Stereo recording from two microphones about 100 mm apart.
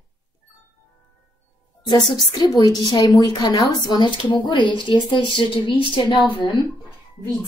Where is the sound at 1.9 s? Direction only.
45° left (ahead or behind).